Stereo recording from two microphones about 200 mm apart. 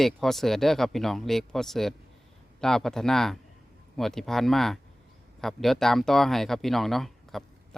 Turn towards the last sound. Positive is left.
turn(degrees=0)  # may be behind; listen again after turning